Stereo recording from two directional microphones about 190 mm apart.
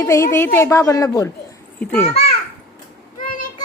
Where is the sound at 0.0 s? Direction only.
15° left (ahead or behind).